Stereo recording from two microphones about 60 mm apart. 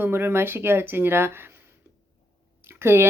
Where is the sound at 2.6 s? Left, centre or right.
Right.